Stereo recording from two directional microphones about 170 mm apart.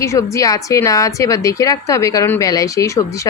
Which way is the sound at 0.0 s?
15° left (ahead or behind).